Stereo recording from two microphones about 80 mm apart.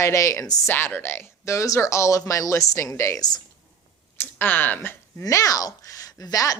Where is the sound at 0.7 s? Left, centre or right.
Left.